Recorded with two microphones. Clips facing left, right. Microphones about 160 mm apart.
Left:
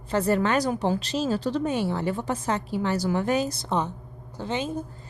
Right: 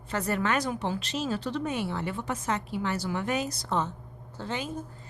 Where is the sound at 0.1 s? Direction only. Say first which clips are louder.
Left 5 dB; 30° left (ahead or behind).